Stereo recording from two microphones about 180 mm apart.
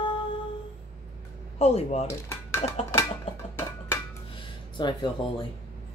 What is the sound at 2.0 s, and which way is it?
Dishes, 15° left (ahead or behind).